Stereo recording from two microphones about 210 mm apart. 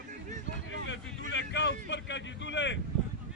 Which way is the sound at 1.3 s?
55° left (ahead or behind).